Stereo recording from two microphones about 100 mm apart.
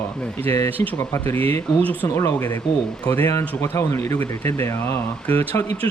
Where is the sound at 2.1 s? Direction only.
25° left (ahead or behind).